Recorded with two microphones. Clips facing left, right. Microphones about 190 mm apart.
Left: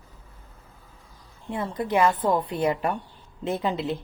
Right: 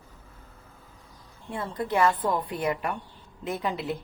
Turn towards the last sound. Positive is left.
turn(degrees=25)  # may be behind; listen again after turning